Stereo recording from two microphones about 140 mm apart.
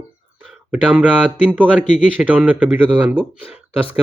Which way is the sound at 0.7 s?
10° right (ahead or behind).